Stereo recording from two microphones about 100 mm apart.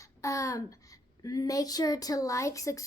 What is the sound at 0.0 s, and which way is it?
A child's voice, 30° left (ahead or behind).